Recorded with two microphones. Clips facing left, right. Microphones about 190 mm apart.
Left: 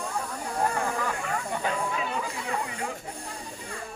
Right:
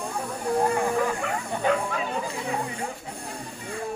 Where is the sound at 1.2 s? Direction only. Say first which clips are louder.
Right 2 dB; 65° right (ahead or behind).